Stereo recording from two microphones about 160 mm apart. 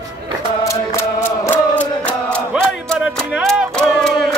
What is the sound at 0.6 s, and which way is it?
Chant, 20° left (ahead or behind).